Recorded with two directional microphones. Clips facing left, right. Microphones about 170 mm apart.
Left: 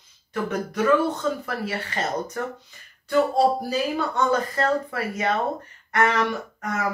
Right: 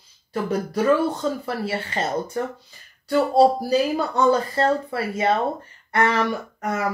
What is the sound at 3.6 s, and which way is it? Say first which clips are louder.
Speech: right 4 dB; 35° right (ahead or behind).